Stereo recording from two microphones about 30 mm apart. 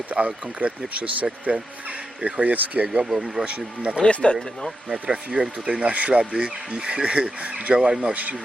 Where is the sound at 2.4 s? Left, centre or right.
Right.